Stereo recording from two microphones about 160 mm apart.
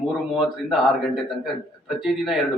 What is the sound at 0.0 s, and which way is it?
A man's voice, centre (ahead or behind).